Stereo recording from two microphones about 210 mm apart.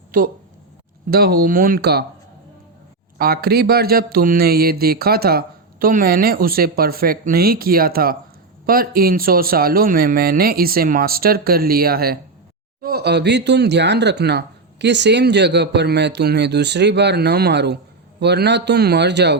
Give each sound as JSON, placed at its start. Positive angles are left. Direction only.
{"t": 0.1, "sound": "speech", "side_deg": -40}
{"t": 3.2, "sound": "speech", "side_deg": -45}